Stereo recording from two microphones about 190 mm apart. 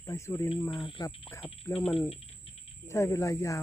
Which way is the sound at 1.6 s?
5° left (ahead or behind).